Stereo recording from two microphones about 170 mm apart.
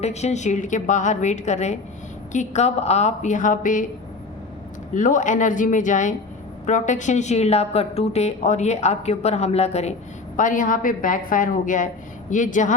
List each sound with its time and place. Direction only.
0.0 s a woman's voice: 40° left (ahead or behind)
4.9 s a woman's voice: 50° left (ahead or behind)
10.3 s a woman's voice: 50° left (ahead or behind)